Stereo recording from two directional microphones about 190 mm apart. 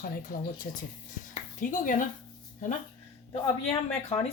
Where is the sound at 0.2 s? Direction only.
50° left (ahead or behind).